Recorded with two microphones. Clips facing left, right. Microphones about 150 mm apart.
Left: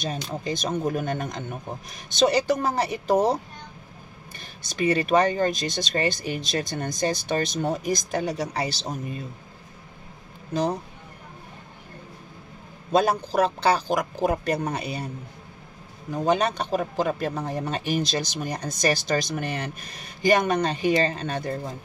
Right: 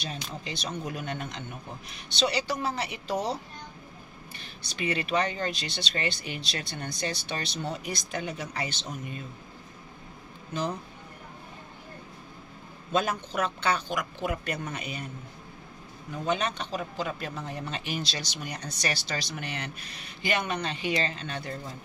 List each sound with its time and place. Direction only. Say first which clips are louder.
0.0 s speech: left 7 dB; 45° left (ahead or behind)
4.4 s speech: left 8 dB; 45° left (ahead or behind)
10.5 s speech: left 7 dB; 35° left (ahead or behind)
12.9 s speech: left 7 dB; 35° left (ahead or behind)
16.1 s speech: left 7 dB; 40° left (ahead or behind)